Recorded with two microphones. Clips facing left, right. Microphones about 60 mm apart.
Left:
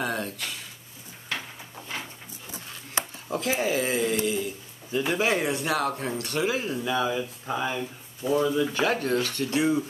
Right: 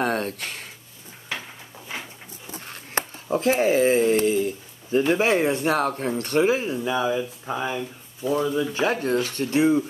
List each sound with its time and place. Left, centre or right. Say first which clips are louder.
0.0 s a sound: right 5 dB; right
2.5 s a sound: right 4 dB; right
3.4 s speech: right 7 dB; right
5.1 s speech: right 2 dB; right
7.2 s speech: right 2 dB; centre
8.7 s speech: right 2 dB; right